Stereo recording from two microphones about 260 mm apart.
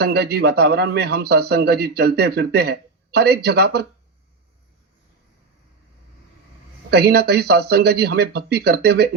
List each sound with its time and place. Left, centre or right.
0.0 s a man's voice: right
6.9 s a man's voice: right